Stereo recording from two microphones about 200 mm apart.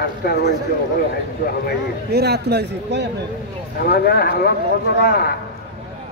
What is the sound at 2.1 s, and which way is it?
Speech, 55° right (ahead or behind).